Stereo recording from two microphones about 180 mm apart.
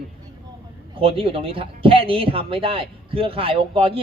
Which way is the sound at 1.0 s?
30° right (ahead or behind).